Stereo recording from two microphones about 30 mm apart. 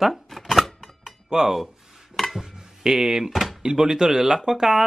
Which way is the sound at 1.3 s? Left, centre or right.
Centre.